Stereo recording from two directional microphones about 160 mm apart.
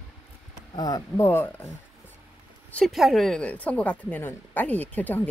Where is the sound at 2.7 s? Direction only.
Centre (ahead or behind).